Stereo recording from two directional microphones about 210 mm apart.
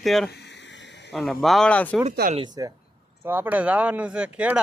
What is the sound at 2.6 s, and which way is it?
Speech, 15° right (ahead or behind).